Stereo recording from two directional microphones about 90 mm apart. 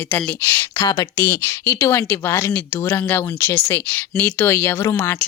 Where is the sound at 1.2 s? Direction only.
30° left (ahead or behind).